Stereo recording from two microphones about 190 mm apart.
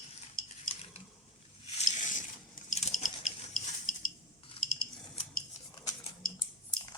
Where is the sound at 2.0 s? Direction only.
40° left (ahead or behind).